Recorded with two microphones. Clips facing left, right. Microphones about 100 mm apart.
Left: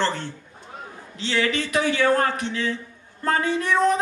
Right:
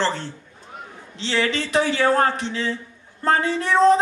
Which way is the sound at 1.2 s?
25° right (ahead or behind).